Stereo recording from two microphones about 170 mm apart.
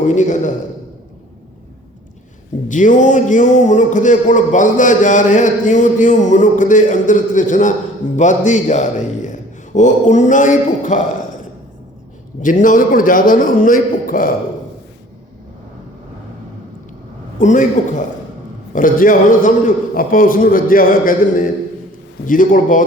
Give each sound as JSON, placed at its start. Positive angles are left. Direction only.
{"t": 0.0, "sound": "a man's voice", "side_deg": 45}
{"t": 2.6, "sound": "a man's voice", "side_deg": 50}
{"t": 12.4, "sound": "a man's voice", "side_deg": 50}
{"t": 17.3, "sound": "a man's voice", "side_deg": 50}